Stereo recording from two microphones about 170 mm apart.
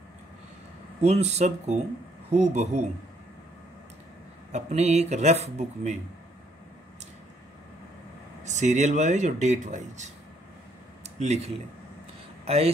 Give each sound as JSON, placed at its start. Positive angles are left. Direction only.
{"t": 1.0, "sound": "speech", "side_deg": -40}
{"t": 4.5, "sound": "speech", "side_deg": -40}
{"t": 8.5, "sound": "speech", "side_deg": -45}
{"t": 11.1, "sound": "speech", "side_deg": -40}